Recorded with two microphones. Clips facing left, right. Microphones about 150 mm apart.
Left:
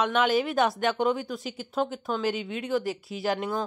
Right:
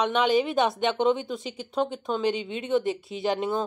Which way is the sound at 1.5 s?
5° left (ahead or behind).